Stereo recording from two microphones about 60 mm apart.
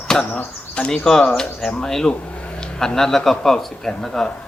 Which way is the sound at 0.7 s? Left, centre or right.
Centre.